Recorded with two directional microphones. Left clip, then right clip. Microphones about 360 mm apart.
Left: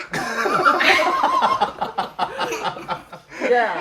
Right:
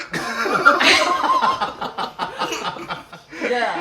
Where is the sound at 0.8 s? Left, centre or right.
Centre.